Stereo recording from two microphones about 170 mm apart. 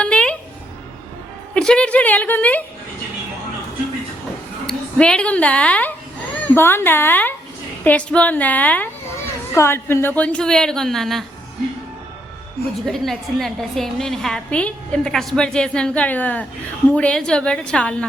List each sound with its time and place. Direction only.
0.0 s a sound: 5° left (ahead or behind)
1.5 s a woman's voice: 5° left (ahead or behind)
4.6 s a woman's voice: 5° left (ahead or behind)
12.8 s a woman's voice: centre (ahead or behind)